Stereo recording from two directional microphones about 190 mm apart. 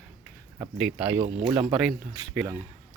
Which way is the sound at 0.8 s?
10° right (ahead or behind).